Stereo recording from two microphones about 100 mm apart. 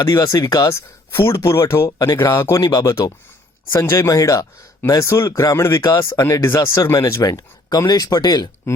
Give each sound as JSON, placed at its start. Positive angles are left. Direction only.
{"t": 0.0, "sound": "speech", "side_deg": 40}
{"t": 1.9, "sound": "speech", "side_deg": 40}
{"t": 2.1, "sound": "speech", "side_deg": 25}
{"t": 2.6, "sound": "speech", "side_deg": 40}
{"t": 8.7, "sound": "speech", "side_deg": 30}